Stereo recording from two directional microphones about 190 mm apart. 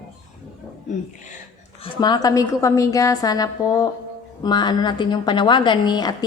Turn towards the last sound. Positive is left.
turn(degrees=20)  # may be behind; listen again after turning